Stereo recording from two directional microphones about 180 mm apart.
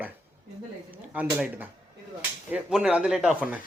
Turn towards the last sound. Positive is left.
turn(degrees=-5)  # may be behind; listen again after turning